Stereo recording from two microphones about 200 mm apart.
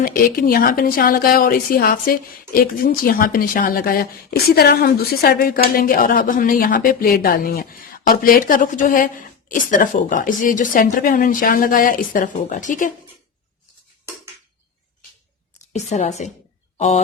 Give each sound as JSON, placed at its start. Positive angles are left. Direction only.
{"t": 0.0, "sound": "a woman's voice", "side_deg": 45}
{"t": 15.5, "sound": "a woman's voice", "side_deg": 35}